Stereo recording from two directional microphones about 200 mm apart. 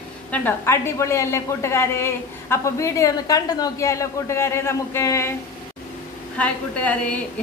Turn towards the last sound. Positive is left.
turn(degrees=5)  # may be behind; listen again after turning